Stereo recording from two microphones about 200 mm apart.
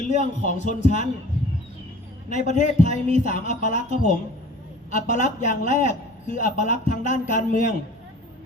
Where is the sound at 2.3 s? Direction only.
35° left (ahead or behind).